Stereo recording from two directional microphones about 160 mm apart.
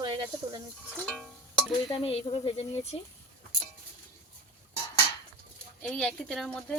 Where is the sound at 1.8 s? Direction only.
35° left (ahead or behind).